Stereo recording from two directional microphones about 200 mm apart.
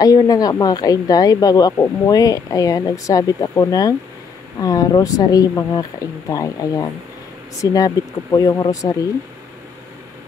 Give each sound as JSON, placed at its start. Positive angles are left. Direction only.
{"t": 0.0, "sound": "a woman's voice", "side_deg": 20}